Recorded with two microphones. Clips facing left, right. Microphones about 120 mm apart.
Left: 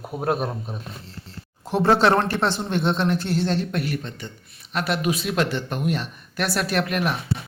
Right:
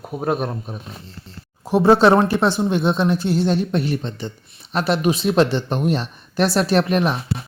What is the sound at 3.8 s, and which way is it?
Speech, 30° right (ahead or behind).